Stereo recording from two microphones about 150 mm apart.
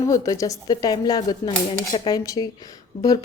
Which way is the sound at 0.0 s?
20° left (ahead or behind).